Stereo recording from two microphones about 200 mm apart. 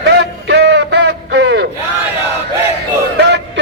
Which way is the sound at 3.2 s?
60° right (ahead or behind).